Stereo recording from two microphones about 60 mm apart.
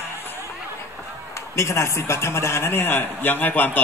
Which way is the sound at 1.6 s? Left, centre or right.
Left.